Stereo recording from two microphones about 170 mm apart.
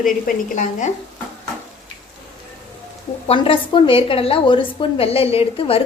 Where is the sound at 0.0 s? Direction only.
50° left (ahead or behind).